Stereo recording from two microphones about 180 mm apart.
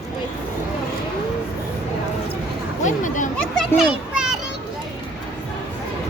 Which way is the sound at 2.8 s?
45° left (ahead or behind).